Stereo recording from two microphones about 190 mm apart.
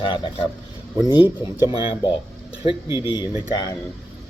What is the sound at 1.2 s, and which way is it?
Mantra, 10° right (ahead or behind).